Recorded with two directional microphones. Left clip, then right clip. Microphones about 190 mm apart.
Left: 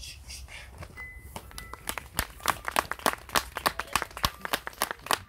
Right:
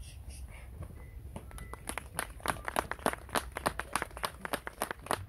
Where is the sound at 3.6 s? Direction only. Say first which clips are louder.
Left 5 dB; 20° right (ahead or behind).